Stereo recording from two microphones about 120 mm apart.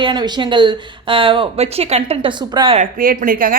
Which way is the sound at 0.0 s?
35° right (ahead or behind).